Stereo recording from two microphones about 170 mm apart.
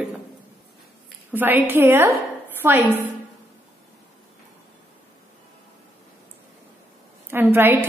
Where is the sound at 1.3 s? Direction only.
10° right (ahead or behind).